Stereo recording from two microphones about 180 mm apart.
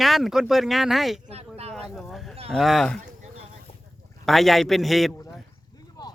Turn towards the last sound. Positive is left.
turn(degrees=25)  # may be behind; listen again after turning